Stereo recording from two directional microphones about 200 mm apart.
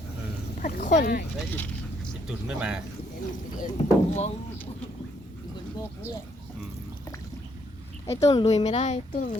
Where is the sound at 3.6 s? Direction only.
35° left (ahead or behind).